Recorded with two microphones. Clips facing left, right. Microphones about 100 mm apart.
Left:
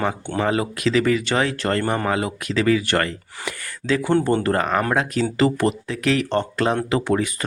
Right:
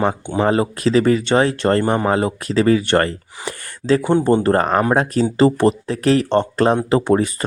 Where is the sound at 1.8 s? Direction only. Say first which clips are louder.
Right 5 dB; 20° right (ahead or behind).